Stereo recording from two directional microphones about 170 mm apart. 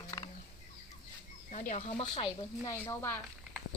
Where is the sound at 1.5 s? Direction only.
45° left (ahead or behind).